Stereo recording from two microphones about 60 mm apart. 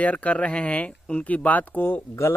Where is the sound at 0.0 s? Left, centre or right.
Left.